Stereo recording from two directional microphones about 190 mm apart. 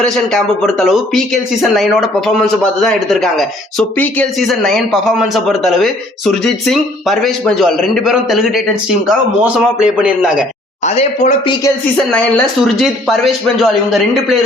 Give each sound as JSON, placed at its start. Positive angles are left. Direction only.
{"t": 0.0, "sound": "speech", "side_deg": 5}
{"t": 10.8, "sound": "speech", "side_deg": 35}
{"t": 12.8, "sound": "speech", "side_deg": 0}